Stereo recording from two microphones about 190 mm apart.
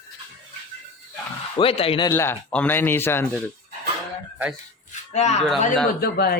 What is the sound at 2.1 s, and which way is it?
Speech, 10° left (ahead or behind).